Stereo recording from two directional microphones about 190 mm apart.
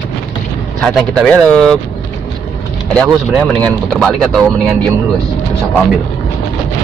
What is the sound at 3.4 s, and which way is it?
Speech, 5° left (ahead or behind).